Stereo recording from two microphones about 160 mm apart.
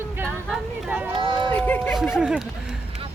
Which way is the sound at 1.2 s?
30° right (ahead or behind).